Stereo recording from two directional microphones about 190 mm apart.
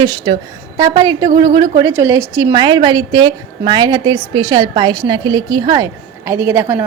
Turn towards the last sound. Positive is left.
turn(degrees=-15)  # may be behind; listen again after turning